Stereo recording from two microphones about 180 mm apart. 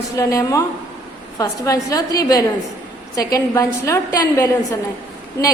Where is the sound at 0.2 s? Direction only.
20° left (ahead or behind).